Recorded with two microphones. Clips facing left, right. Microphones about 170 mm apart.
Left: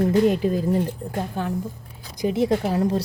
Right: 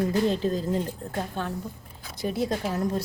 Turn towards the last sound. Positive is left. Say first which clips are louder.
# left 5 dB
turn(degrees=30)  # may be behind; listen again after turning